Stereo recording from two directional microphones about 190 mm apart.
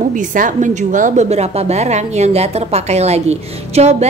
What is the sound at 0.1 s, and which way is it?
A woman's voice, 45° right (ahead or behind).